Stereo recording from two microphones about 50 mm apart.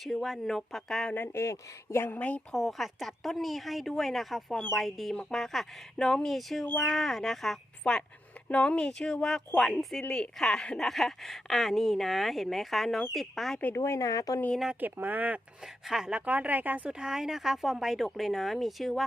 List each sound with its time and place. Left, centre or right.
0.0 s speech: centre
1.3 s speech: left
2.1 s speech: left
2.5 s speech: centre
7.9 s speech: centre
10.8 s speech: centre
13.7 s speech: left
14.8 s speech: right
15.6 s speech: centre
16.1 s speech: right
16.9 s speech: centre